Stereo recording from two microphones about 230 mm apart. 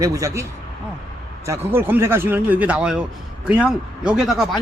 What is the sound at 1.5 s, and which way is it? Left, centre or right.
Speech, centre.